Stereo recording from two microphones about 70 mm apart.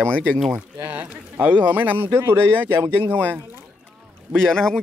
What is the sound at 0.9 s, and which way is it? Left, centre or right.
Speech, right.